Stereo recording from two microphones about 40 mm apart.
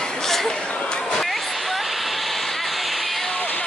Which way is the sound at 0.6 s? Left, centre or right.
Left.